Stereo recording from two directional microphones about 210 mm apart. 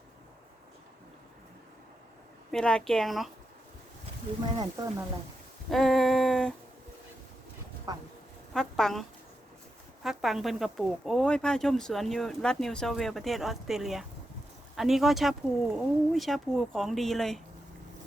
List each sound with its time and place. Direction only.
2.5 s speech: 5° left (ahead or behind)
4.5 s speech: 20° right (ahead or behind)
5.7 s a sound: centre (ahead or behind)
7.9 s speech: 20° right (ahead or behind)
8.5 s speech: centre (ahead or behind)